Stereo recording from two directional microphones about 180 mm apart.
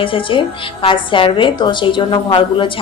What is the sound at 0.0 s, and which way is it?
A woman's voice, 30° left (ahead or behind).